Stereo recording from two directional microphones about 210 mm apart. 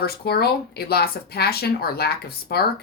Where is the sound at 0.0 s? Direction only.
50° left (ahead or behind).